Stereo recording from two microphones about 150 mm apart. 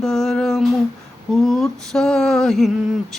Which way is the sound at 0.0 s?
5° left (ahead or behind).